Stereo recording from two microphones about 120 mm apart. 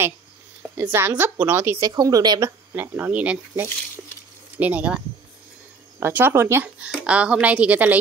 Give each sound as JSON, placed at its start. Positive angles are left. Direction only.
{"t": 0.7, "sound": "speech", "side_deg": -20}
{"t": 1.8, "sound": "speech", "side_deg": -35}
{"t": 2.7, "sound": "speech", "side_deg": -15}